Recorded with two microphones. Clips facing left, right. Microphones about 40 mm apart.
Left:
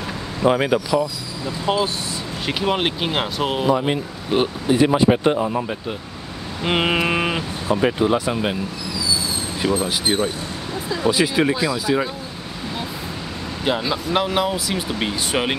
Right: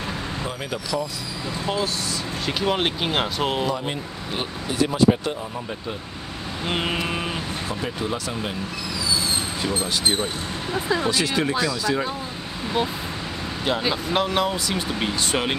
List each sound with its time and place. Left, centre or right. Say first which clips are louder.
0.4 s speech: left 12 dB; left
0.9 s speech: left 6 dB; left
2.4 s speech: left 2 dB; centre
3.7 s speech: left 7 dB; left
9.6 s speech: left 7 dB; left
11.1 s speech: left 5 dB; centre
13.7 s speech: left 2 dB; centre